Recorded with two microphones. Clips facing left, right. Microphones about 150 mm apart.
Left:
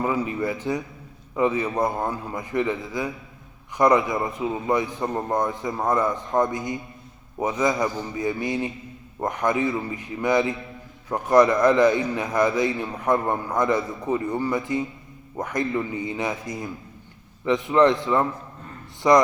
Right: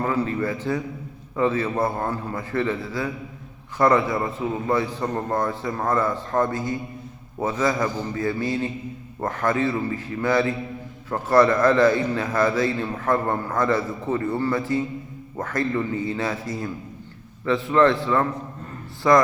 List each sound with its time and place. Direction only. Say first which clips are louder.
0.0 s a man's voice: right 1 dB; 10° left (ahead or behind)